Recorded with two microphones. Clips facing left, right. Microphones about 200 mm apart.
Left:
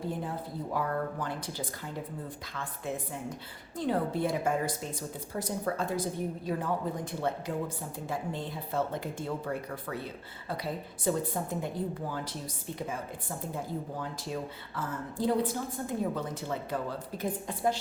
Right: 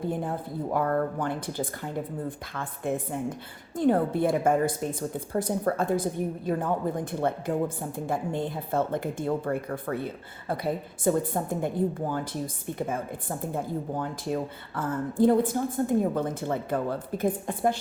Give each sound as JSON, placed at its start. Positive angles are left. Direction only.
{"t": 0.1, "sound": "speech", "side_deg": -50}
{"t": 2.8, "sound": "speech", "side_deg": -50}